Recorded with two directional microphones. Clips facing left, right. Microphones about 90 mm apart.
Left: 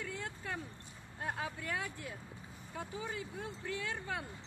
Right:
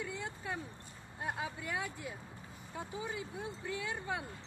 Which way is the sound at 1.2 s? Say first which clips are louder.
Even; 15° right (ahead or behind).